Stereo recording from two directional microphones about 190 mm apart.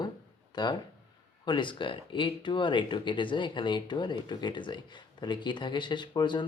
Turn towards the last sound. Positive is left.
turn(degrees=25)  # may be behind; listen again after turning